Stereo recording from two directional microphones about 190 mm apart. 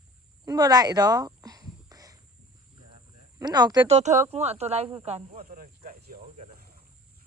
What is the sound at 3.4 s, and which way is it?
Speech, 20° right (ahead or behind).